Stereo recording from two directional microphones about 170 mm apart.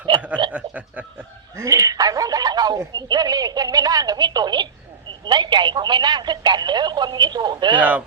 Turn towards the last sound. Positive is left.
turn(degrees=-25)  # may be behind; listen again after turning